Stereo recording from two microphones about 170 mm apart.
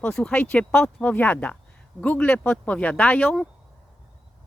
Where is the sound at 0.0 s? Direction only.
5° left (ahead or behind).